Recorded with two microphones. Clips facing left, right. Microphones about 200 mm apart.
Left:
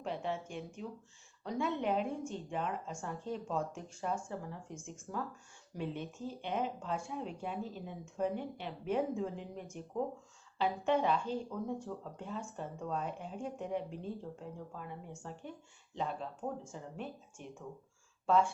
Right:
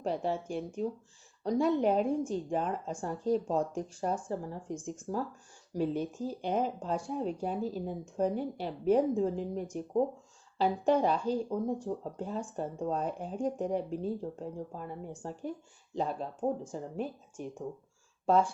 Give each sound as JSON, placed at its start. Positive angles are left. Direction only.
{"t": 0.0, "sound": "speech", "side_deg": -40}